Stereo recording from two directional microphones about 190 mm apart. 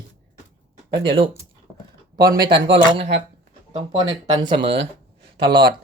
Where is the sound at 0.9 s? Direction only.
65° right (ahead or behind).